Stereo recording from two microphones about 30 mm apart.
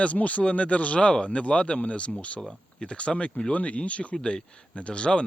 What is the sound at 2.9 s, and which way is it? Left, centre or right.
A man's voice, left.